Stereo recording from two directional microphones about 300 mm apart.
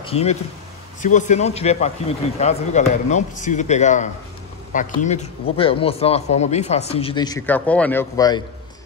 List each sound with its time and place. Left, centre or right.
0.0 s speech: centre